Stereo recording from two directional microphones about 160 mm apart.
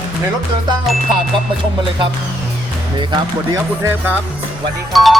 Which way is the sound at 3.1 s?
20° right (ahead or behind).